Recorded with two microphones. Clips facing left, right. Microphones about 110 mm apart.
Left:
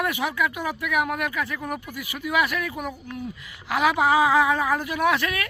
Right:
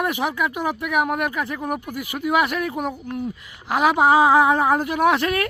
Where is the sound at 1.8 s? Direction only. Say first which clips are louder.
Right 6 dB; 50° right (ahead or behind).